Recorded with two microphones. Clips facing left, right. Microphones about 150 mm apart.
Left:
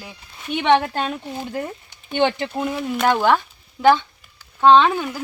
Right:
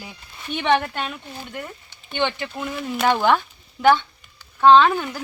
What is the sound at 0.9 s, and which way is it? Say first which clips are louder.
Speech: left 5 dB; 35° left (ahead or behind).